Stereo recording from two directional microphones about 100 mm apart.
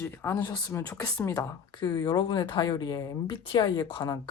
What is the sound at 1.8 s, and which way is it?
Speech, 40° left (ahead or behind).